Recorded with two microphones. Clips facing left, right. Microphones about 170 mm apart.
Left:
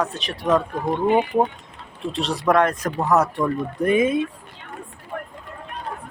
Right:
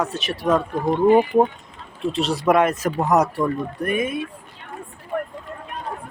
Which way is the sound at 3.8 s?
20° left (ahead or behind).